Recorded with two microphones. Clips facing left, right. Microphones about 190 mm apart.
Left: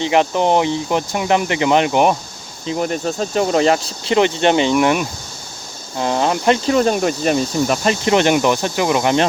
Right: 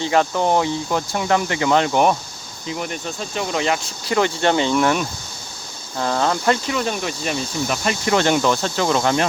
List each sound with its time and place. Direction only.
0.0 s speech: 20° left (ahead or behind)
2.6 s speech: 35° left (ahead or behind)
4.0 s speech: 20° left (ahead or behind)
6.7 s speech: 40° left (ahead or behind)
7.9 s speech: 20° left (ahead or behind)